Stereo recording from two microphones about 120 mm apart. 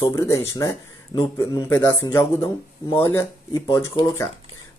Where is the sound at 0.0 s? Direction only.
30° left (ahead or behind).